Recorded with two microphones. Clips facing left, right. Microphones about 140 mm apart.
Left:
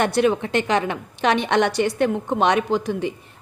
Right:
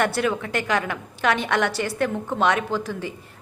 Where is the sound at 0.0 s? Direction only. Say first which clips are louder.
Left 4 dB; 20° left (ahead or behind).